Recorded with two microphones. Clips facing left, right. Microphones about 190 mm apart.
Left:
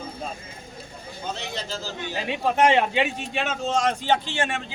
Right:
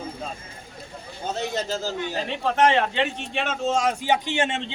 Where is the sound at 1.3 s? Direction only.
45° right (ahead or behind).